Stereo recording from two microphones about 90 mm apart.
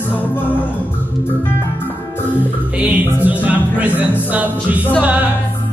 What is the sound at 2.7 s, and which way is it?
Music, 15° right (ahead or behind).